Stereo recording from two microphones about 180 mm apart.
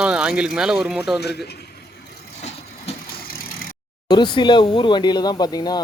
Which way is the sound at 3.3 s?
55° left (ahead or behind).